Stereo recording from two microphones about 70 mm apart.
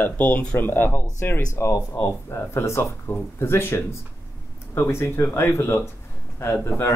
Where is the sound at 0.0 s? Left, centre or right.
Left.